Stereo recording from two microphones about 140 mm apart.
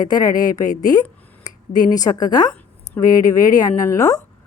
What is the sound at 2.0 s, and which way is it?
Speech, 25° left (ahead or behind).